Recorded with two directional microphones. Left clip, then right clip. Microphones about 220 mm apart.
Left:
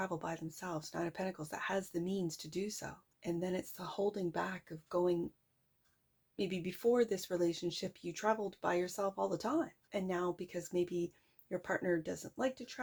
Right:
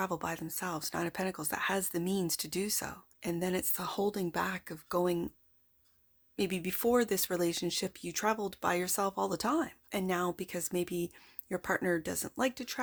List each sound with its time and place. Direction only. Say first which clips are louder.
0.0 s speech: right 5 dB; 30° right (ahead or behind)
6.3 s speech: right 5 dB; 30° right (ahead or behind)